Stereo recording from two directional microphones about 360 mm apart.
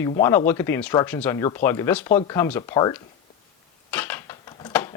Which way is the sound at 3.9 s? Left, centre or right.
Centre.